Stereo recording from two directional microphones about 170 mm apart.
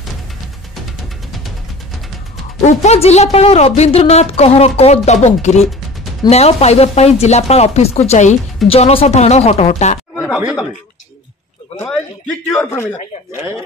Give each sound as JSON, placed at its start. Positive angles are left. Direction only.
{"t": 2.6, "sound": "a woman's voice", "side_deg": 40}
{"t": 10.2, "sound": "speech", "side_deg": -5}
{"t": 11.8, "sound": "a man's voice", "side_deg": 5}
{"t": 12.5, "sound": "a man's voice", "side_deg": 15}